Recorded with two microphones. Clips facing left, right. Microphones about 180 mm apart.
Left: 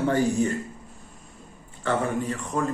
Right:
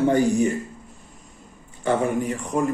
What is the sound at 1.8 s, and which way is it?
Speech, 15° right (ahead or behind).